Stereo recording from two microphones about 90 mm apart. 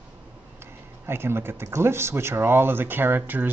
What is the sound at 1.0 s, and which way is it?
Speech, 25° right (ahead or behind).